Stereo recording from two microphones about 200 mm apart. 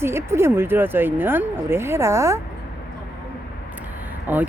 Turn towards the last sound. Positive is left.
turn(degrees=-10)  # may be behind; listen again after turning